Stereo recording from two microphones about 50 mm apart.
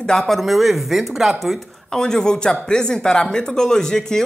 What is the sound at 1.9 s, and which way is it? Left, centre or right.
Speech, centre.